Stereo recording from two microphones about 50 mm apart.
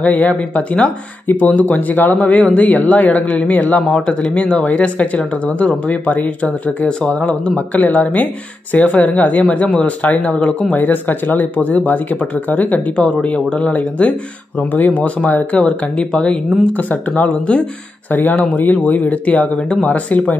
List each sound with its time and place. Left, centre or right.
0.0 s speech: left
3.9 s speech: left
10.8 s speech: left
12.9 s speech: left
18.4 s speech: left